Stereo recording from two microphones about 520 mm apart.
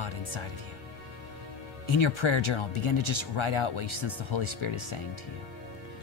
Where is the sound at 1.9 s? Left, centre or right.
Left.